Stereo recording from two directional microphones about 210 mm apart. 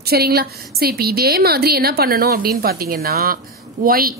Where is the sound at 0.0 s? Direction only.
50° right (ahead or behind).